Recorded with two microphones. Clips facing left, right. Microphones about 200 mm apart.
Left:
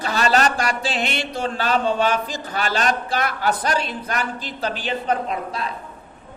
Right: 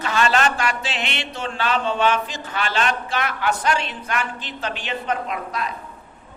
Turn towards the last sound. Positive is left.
turn(degrees=30)  # may be behind; listen again after turning